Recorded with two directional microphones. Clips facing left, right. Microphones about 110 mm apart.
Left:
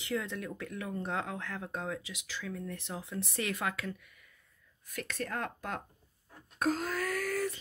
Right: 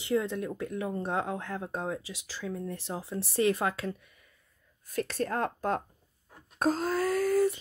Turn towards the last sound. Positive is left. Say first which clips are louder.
# right 8 dB
turn(degrees=-25)  # may be behind; listen again after turning